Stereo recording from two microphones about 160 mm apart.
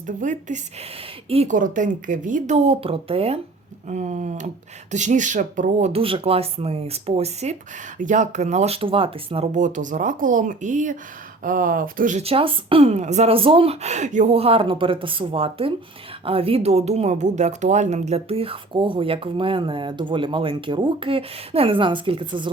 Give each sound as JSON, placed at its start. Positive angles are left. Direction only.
{"t": 0.2, "sound": "speech", "side_deg": -50}
{"t": 1.3, "sound": "speech", "side_deg": -40}
{"t": 1.5, "sound": "speech", "side_deg": -55}
{"t": 5.9, "sound": "speech", "side_deg": -35}
{"t": 7.9, "sound": "speech", "side_deg": -50}
{"t": 9.6, "sound": "speech", "side_deg": -50}
{"t": 12.2, "sound": "speech", "side_deg": -35}